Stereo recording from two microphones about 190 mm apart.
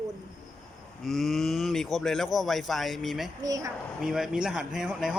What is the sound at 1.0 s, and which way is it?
Speech, centre (ahead or behind).